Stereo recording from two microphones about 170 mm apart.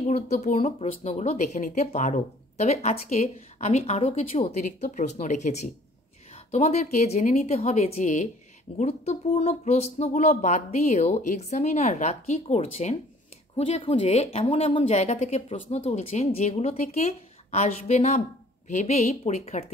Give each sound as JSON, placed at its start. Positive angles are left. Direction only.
{"t": 0.0, "sound": "speech", "side_deg": 40}